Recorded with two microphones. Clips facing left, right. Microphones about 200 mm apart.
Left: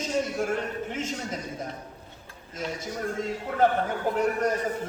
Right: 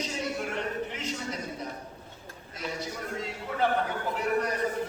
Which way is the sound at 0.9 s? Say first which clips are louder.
Left 3 dB; 45° left (ahead or behind).